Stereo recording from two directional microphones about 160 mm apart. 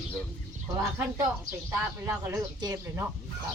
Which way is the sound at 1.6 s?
15° right (ahead or behind).